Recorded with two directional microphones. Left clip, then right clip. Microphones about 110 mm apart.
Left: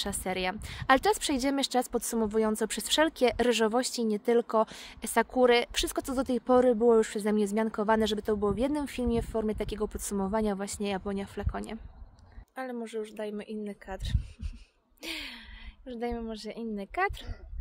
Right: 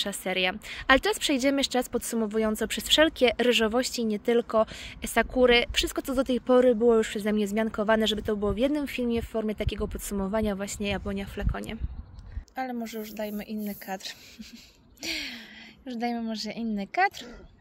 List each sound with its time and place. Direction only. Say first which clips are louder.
0.0 s speech: right 4 dB; 40° left (ahead or behind)
12.5 s a woman's voice: right 2 dB; 55° left (ahead or behind)